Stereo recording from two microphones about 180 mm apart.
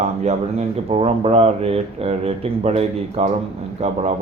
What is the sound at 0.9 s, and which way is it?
Speech, 35° right (ahead or behind).